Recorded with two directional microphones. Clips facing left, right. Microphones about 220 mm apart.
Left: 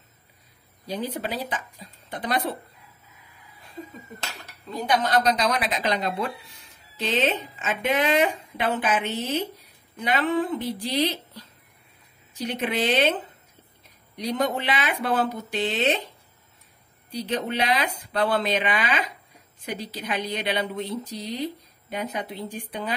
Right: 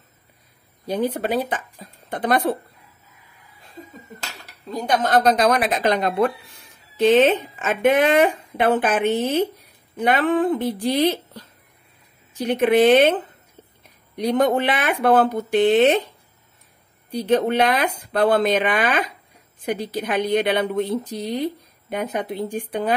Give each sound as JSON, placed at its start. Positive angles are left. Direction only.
{"t": 0.8, "sound": "a woman's voice", "side_deg": -55}
{"t": 4.6, "sound": "a woman's voice", "side_deg": -45}
{"t": 14.1, "sound": "a woman's voice", "side_deg": -55}
{"t": 17.1, "sound": "a woman's voice", "side_deg": -50}